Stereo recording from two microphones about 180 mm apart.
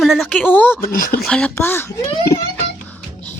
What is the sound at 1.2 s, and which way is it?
Speech, 5° left (ahead or behind).